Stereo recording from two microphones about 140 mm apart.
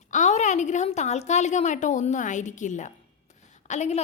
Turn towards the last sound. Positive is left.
turn(degrees=55)  # may be behind; listen again after turning